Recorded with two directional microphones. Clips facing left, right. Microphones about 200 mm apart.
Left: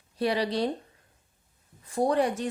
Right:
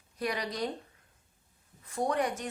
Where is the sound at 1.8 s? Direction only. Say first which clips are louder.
Left 6 dB; 30° left (ahead or behind).